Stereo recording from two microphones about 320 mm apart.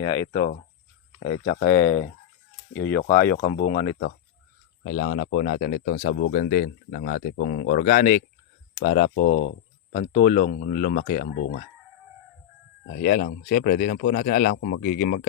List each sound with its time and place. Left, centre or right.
0.0 s speech: centre
1.2 s speech: left
3.0 s speech: centre
3.2 s speech: left
13.0 s speech: left